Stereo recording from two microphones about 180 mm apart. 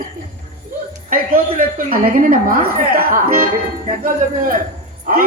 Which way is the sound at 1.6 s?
50° right (ahead or behind).